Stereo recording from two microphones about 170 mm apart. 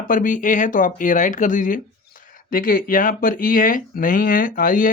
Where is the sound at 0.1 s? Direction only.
50° left (ahead or behind).